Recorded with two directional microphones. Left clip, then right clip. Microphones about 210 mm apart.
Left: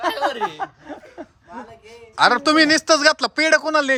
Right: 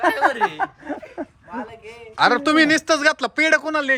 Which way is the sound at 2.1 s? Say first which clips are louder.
Left 1 dB; 10° left (ahead or behind).